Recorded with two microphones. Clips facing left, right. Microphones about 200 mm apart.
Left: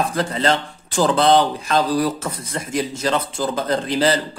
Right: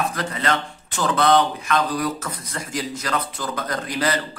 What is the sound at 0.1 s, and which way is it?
A man's voice, 30° left (ahead or behind).